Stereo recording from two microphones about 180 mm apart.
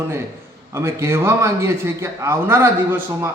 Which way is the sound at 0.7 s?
15° right (ahead or behind).